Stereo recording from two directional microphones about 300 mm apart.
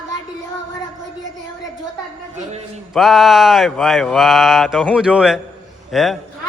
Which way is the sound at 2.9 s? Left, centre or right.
Centre.